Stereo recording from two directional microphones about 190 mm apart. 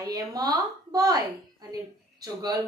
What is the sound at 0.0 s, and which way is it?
A woman's voice, 20° right (ahead or behind).